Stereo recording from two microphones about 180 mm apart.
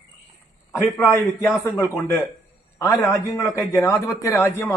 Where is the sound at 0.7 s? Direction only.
15° left (ahead or behind).